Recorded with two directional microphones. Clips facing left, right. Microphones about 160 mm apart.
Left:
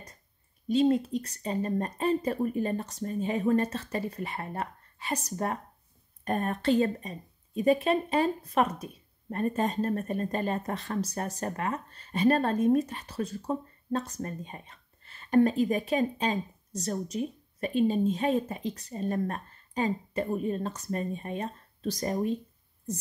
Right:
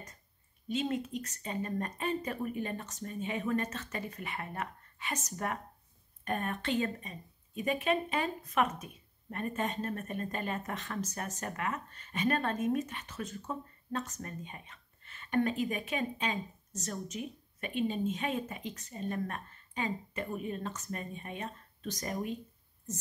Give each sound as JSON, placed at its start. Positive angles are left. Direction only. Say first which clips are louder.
{"t": 0.7, "sound": "speech", "louder": "left 9 dB", "side_deg": 35}